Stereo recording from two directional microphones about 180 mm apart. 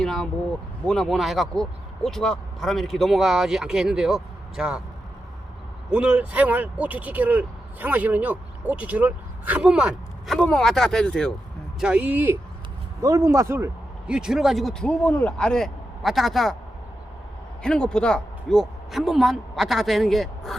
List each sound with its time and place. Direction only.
0.0 s a sound: centre (ahead or behind)
0.9 s a man's voice: centre (ahead or behind)
5.9 s speech: 5° right (ahead or behind)
11.8 s speech: 5° right (ahead or behind)
14.1 s a man's voice: 5° right (ahead or behind)
17.6 s a man's voice: 5° left (ahead or behind)